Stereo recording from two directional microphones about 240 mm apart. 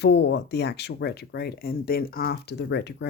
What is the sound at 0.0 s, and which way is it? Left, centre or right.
Speech, left.